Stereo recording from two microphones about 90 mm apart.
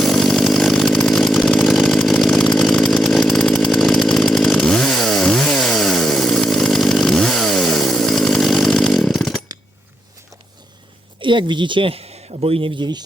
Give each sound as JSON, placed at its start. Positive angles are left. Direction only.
{"t": 0.0, "sound": "chainsaw", "side_deg": 0}
{"t": 11.2, "sound": "speech", "side_deg": -65}